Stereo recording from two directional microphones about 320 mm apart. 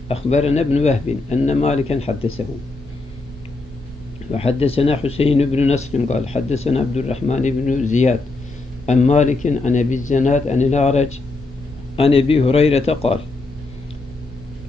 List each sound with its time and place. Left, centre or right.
0.1 s speech: centre
4.3 s a man's voice: centre